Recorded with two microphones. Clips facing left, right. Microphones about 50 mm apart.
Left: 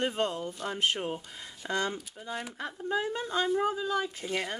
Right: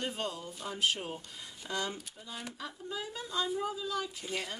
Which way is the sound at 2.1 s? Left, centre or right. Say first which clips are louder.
Left 6 dB; left.